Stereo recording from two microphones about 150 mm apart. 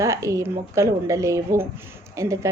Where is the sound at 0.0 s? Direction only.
20° right (ahead or behind).